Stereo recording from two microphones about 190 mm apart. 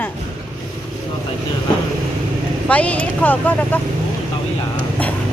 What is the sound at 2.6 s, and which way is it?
Speech, 5° left (ahead or behind).